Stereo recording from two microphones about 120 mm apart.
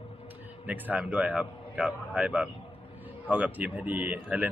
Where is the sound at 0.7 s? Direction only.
15° right (ahead or behind).